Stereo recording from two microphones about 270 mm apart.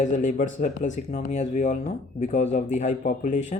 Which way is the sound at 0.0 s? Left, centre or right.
Left.